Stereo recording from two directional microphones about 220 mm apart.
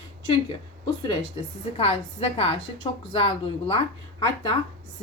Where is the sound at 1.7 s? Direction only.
25° left (ahead or behind).